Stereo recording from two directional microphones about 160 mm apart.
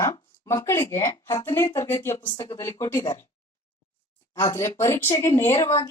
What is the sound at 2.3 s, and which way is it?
Speech, 30° left (ahead or behind).